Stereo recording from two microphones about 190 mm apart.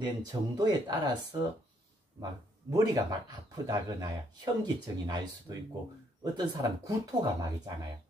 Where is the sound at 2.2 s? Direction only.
20° right (ahead or behind).